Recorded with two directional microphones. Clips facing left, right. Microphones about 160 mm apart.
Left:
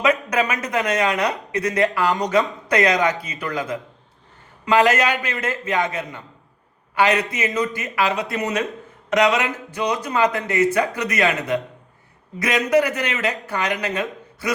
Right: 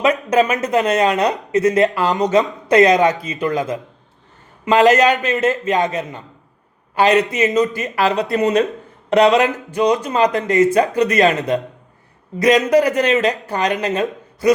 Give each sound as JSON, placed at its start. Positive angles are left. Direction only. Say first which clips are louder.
{"t": 0.0, "sound": "a man's voice", "louder": "right 5 dB", "side_deg": -30}
{"t": 12.7, "sound": "a man's voice", "louder": "right 5 dB", "side_deg": -30}